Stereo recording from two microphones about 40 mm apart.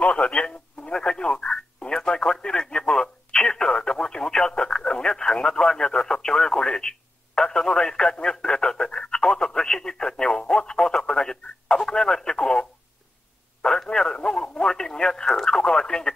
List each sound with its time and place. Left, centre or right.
0.0 s telephone: left
10.5 s radio: left